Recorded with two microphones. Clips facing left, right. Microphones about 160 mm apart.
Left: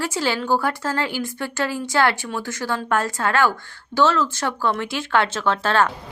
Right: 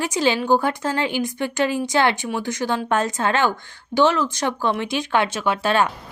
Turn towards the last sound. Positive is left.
turn(degrees=-15)  # may be behind; listen again after turning